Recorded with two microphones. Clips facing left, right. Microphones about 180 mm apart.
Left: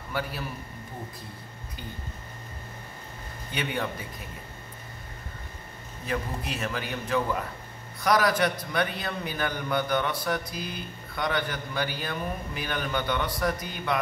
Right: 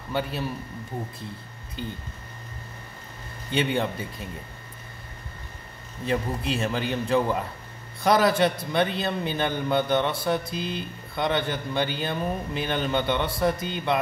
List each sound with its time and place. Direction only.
0.1 s a man's voice: 25° right (ahead or behind)
3.5 s a man's voice: 25° right (ahead or behind)
6.0 s a man's voice: 25° right (ahead or behind)